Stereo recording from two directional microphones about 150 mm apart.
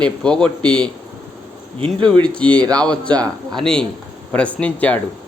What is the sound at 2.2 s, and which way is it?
Speech, 10° left (ahead or behind).